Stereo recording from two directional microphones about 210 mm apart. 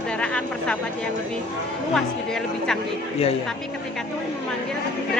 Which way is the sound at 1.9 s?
Centre (ahead or behind).